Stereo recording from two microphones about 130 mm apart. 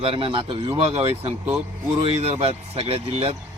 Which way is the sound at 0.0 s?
45° right (ahead or behind).